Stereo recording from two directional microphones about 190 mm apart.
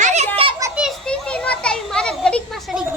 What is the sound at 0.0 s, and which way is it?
Children playing, 35° right (ahead or behind).